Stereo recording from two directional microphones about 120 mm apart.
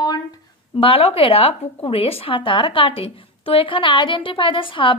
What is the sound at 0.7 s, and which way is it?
A woman's voice, 50° left (ahead or behind).